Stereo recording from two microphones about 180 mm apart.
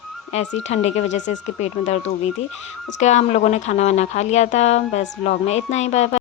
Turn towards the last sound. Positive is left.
turn(degrees=35)  # may be behind; listen again after turning